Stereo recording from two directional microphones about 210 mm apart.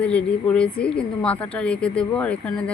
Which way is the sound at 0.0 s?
5° left (ahead or behind).